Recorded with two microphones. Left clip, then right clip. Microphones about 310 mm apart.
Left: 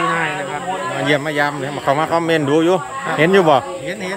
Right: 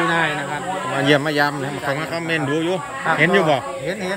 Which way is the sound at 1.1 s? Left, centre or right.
Centre.